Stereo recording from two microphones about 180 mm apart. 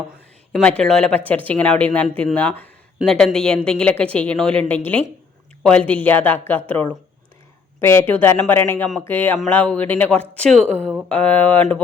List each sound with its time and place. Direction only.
0.5 s a woman's voice: 5° left (ahead or behind)